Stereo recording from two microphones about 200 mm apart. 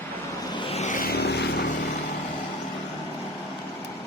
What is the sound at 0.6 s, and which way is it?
Vehicle, 30° left (ahead or behind).